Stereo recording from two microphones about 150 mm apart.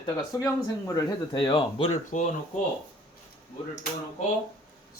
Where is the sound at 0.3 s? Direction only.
20° left (ahead or behind).